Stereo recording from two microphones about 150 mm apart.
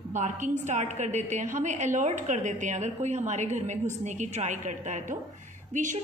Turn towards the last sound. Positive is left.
turn(degrees=-60)  # may be behind; listen again after turning